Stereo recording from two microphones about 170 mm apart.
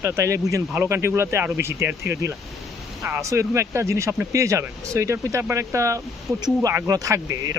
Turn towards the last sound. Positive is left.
turn(degrees=-20)  # may be behind; listen again after turning